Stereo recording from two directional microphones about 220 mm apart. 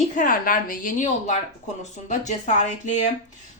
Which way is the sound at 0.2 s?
40° left (ahead or behind).